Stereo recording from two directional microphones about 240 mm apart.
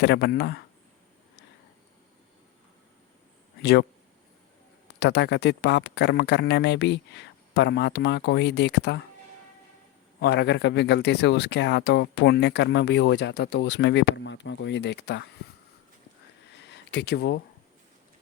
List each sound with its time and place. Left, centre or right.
0.0 s speech: left
3.6 s speech: left
4.9 s speech: left
10.2 s speech: left
16.6 s a sound: left